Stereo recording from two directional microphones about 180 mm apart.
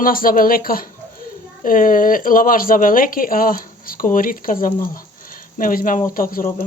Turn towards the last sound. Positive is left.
turn(degrees=50)  # may be behind; listen again after turning